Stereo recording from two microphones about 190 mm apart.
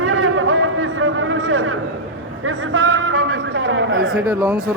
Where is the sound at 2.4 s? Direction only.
85° right.